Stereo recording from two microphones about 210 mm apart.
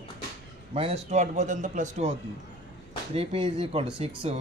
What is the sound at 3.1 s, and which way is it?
Speech, 25° right (ahead or behind).